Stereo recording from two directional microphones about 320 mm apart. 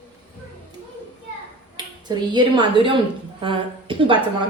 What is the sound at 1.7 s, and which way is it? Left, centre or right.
A woman's voice, centre.